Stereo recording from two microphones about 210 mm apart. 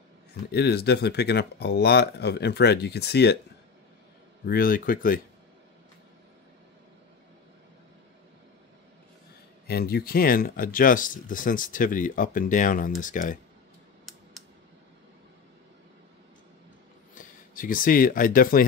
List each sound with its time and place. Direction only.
0.5 s speech: 50° left (ahead or behind)
4.5 s speech: 45° left (ahead or behind)
9.7 s speech: 50° left (ahead or behind)
17.1 s speech: 40° left (ahead or behind)